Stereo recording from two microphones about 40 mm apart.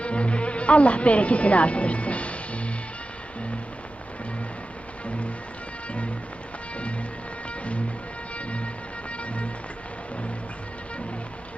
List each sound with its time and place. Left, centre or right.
0.0 s music: left
5.0 s music: left
8.4 s music: left